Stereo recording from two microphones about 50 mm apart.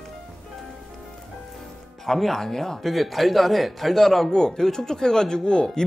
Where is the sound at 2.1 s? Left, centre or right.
Centre.